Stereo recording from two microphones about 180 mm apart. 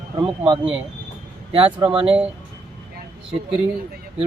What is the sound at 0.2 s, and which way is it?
A man's voice, 30° right (ahead or behind).